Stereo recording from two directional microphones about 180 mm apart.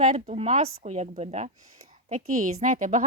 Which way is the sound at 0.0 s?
40° right (ahead or behind).